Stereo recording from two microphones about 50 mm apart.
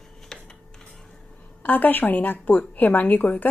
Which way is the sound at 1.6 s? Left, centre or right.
Left.